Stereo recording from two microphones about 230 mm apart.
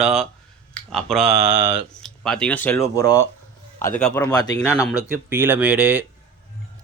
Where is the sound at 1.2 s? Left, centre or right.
Right.